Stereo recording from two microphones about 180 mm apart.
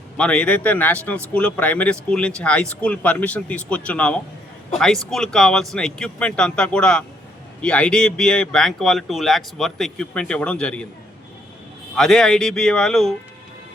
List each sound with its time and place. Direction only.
0.2 s speech: 5° left (ahead or behind)
11.9 s speech: centre (ahead or behind)